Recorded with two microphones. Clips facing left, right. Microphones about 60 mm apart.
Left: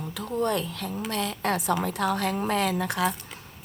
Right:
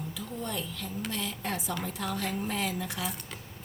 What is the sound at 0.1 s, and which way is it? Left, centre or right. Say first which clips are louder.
A woman's voice: left 14 dB; left.